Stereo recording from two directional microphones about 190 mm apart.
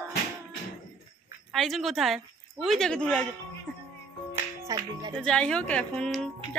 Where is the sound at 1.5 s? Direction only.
Centre (ahead or behind).